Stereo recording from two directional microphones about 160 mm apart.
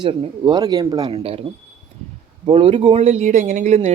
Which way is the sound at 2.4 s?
35° right (ahead or behind).